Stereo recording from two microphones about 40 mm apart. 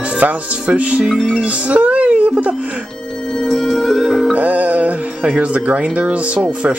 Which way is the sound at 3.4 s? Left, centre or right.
Centre.